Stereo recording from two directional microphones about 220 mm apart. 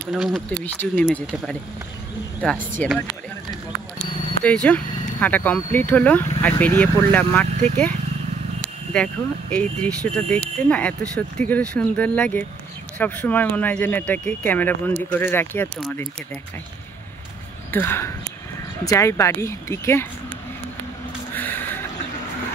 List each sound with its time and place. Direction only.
0.1 s speech: centre (ahead or behind)
4.5 s speech: 5° left (ahead or behind)
7.4 s speech: 35° right (ahead or behind)
8.9 s speech: 5° left (ahead or behind)
17.6 s speech: 10° left (ahead or behind)
21.4 s a sound: 10° left (ahead or behind)